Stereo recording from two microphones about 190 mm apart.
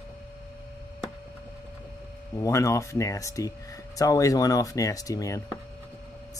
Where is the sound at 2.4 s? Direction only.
15° left (ahead or behind).